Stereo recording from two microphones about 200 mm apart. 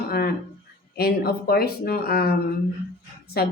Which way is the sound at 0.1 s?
50° left (ahead or behind).